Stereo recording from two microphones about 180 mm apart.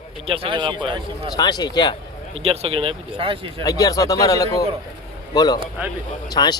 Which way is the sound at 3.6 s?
20° left (ahead or behind).